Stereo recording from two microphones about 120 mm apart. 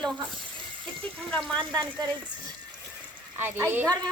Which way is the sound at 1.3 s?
10° left (ahead or behind).